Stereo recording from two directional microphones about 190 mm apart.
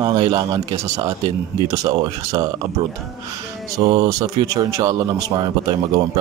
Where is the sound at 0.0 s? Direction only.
20° right (ahead or behind).